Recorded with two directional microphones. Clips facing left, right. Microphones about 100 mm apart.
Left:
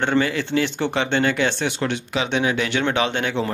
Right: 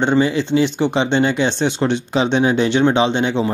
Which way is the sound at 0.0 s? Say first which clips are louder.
Right 4 dB; 20° right (ahead or behind).